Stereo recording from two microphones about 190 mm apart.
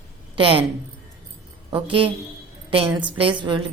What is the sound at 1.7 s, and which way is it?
A woman's voice, 25° right (ahead or behind).